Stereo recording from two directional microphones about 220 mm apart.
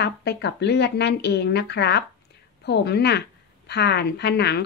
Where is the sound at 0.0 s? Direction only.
50° left (ahead or behind).